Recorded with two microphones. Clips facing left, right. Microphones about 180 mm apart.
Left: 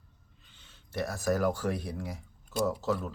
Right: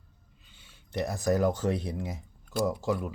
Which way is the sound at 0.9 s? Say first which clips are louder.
Right 3 dB; 20° right (ahead or behind).